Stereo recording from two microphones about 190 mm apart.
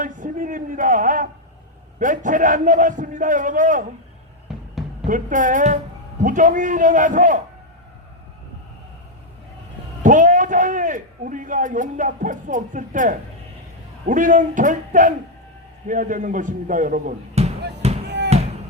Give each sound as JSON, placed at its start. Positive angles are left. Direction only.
{"t": 0.0, "sound": "a sound", "side_deg": -45}
{"t": 2.0, "sound": "a man's voice", "side_deg": -45}
{"t": 4.5, "sound": "a sound", "side_deg": -5}
{"t": 5.0, "sound": "a man's voice", "side_deg": -45}
{"t": 10.0, "sound": "a man's voice", "side_deg": -45}
{"t": 17.8, "sound": "music", "side_deg": -35}